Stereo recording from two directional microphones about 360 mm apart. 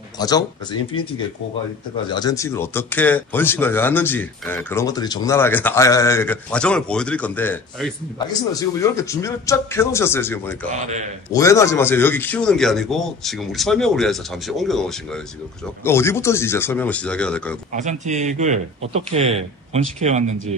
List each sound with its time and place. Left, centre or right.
0.2 s speech: centre
2.0 s speech: centre
10.7 s a man's voice: centre
11.3 s speech: centre
17.7 s a man's voice: centre